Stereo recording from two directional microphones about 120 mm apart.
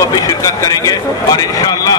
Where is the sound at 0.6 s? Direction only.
30° left (ahead or behind).